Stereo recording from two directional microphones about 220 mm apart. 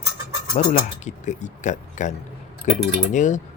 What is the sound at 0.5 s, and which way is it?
Speech, 35° left (ahead or behind).